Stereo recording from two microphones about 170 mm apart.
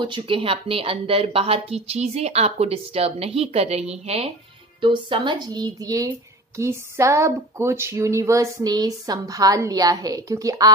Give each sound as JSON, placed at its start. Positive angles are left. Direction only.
{"t": 0.0, "sound": "a woman's voice", "side_deg": -30}